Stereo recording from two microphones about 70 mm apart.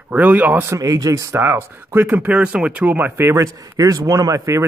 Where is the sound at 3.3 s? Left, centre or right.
Right.